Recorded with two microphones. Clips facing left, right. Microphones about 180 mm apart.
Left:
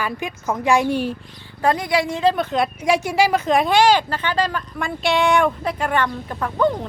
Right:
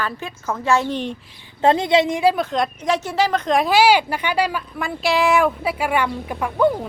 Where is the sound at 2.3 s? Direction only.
Centre (ahead or behind).